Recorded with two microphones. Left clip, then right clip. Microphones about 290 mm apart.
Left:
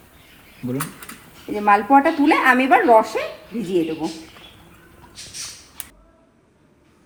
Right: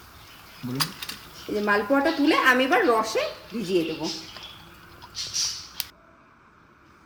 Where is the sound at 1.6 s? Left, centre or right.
Centre.